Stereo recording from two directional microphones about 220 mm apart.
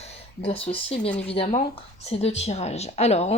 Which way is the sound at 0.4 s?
25° left (ahead or behind).